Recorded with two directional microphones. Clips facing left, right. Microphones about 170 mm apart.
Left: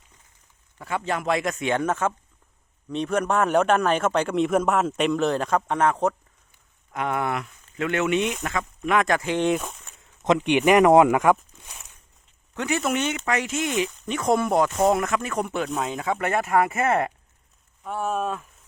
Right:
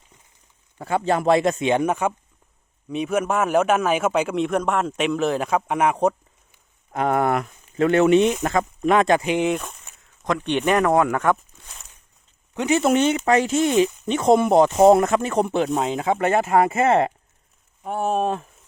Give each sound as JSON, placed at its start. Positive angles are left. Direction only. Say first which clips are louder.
{"t": 0.8, "sound": "a man's voice", "louder": "right 6 dB", "side_deg": -35}
{"t": 6.9, "sound": "speech", "louder": "right 6 dB", "side_deg": -40}
{"t": 9.4, "sound": "a man's voice", "louder": "even", "side_deg": 0}
{"t": 10.2, "sound": "speech", "louder": "left 2 dB", "side_deg": 15}
{"t": 11.1, "sound": "a sound", "louder": "left 2 dB", "side_deg": 10}
{"t": 12.5, "sound": "speech", "louder": "right 6 dB", "side_deg": -25}